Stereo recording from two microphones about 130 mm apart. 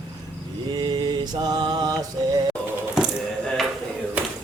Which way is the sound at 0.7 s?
35° right (ahead or behind).